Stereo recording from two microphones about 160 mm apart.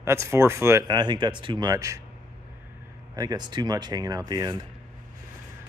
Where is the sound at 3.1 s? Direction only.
25° right (ahead or behind).